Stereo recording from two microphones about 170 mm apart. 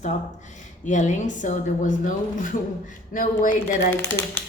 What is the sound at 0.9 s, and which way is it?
A woman's voice, 45° left (ahead or behind).